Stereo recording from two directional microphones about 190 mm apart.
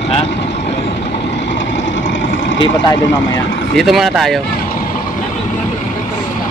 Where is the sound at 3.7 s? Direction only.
Centre (ahead or behind).